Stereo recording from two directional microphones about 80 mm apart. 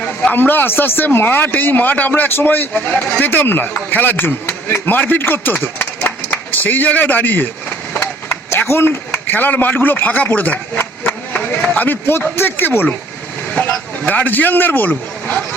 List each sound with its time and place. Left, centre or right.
0.0 s a sound: centre
0.3 s speech: left
8.4 s a man's voice: left
13.5 s speech: centre